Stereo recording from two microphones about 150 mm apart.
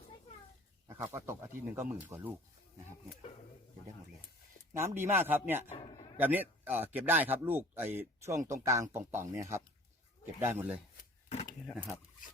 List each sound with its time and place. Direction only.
0.9 s speech: 20° right (ahead or behind)
4.7 s speech: 20° right (ahead or behind)